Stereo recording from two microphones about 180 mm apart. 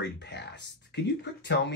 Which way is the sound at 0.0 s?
70° left (ahead or behind).